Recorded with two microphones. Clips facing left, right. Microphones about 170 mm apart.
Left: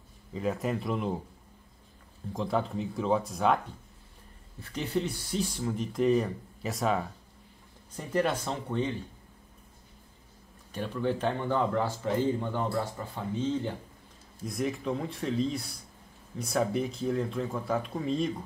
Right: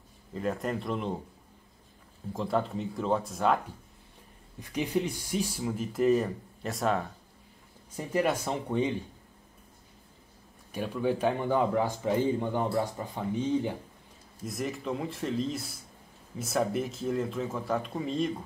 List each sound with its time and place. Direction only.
0.3 s speech: centre (ahead or behind)
2.3 s speech: centre (ahead or behind)
4.6 s speech: 15° right (ahead or behind)
10.7 s speech: 10° right (ahead or behind)
14.4 s speech: centre (ahead or behind)